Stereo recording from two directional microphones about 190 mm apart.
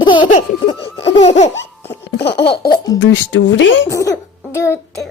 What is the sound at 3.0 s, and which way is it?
Speech, 75° left (ahead or behind).